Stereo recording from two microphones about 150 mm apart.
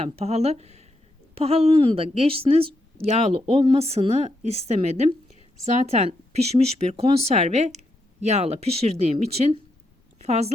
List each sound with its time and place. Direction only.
0.0 s a woman's voice: 45° right (ahead or behind)